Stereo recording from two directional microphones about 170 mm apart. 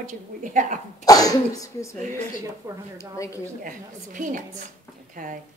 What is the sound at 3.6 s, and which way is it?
A woman's voice, 50° right (ahead or behind).